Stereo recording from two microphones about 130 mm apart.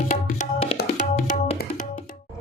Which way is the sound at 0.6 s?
70° left (ahead or behind).